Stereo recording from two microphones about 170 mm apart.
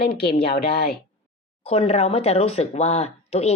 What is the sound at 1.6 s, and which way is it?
Speech, 35° left (ahead or behind).